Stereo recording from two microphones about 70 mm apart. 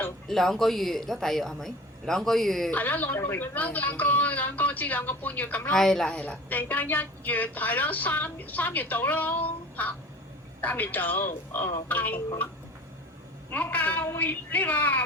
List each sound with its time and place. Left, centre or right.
0.3 s speech: centre
2.7 s a woman's voice: left
5.7 s a woman's voice: centre; by 12.2 s left
13.5 s a woman's voice: left